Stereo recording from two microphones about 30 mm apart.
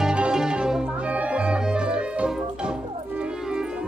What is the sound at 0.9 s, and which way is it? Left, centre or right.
Music, right.